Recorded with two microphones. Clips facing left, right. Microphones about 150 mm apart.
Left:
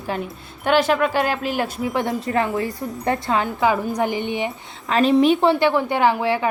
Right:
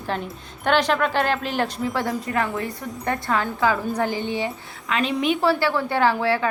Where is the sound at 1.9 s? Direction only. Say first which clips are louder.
Left 3 dB; 20° left (ahead or behind).